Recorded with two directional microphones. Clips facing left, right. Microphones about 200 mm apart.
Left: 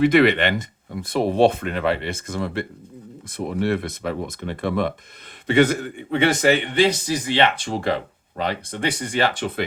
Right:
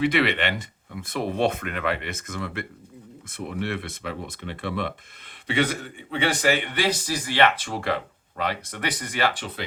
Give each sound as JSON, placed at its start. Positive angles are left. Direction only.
{"t": 0.0, "sound": "speech", "side_deg": 45}
{"t": 6.7, "sound": "speech", "side_deg": 25}
{"t": 9.3, "sound": "speech", "side_deg": 45}